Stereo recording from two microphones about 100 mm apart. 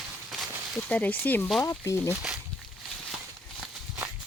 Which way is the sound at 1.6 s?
30° left (ahead or behind).